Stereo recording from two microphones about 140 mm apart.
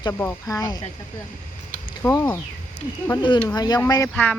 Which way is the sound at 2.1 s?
20° left (ahead or behind).